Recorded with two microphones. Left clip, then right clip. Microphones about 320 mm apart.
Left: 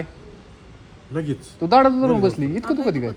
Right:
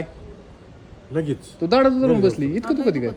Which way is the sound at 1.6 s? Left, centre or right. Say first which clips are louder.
Left 2 dB; centre.